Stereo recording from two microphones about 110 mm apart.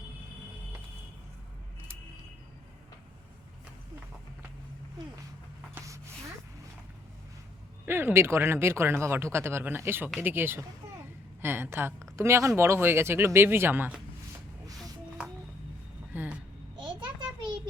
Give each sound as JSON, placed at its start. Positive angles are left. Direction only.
{"t": 7.9, "sound": "speech", "side_deg": -20}
{"t": 16.1, "sound": "vehicle", "side_deg": -15}
{"t": 16.7, "sound": "a sound", "side_deg": -45}